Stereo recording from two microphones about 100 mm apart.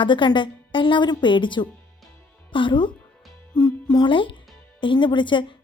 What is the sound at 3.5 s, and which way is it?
A woman's voice, 45° left (ahead or behind).